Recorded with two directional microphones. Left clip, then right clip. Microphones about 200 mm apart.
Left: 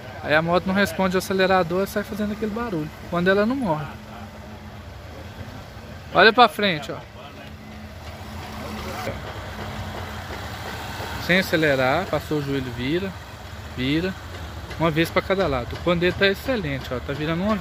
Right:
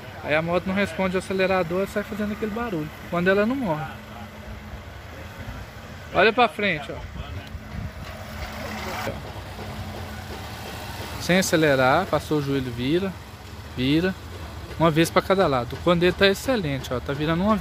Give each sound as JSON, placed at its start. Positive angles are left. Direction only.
{"t": 0.3, "sound": "speech", "side_deg": 15}
{"t": 6.1, "sound": "speech", "side_deg": 15}
{"t": 11.2, "sound": "speech", "side_deg": -25}